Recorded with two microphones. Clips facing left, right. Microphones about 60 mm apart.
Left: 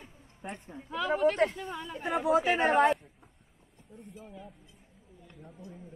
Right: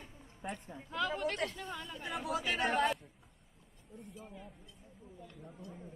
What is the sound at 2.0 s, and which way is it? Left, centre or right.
Speech, left.